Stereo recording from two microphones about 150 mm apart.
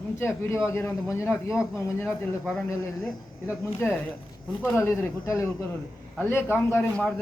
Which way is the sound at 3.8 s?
15° left (ahead or behind).